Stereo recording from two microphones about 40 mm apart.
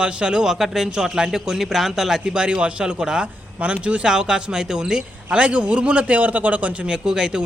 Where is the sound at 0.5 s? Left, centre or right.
Centre.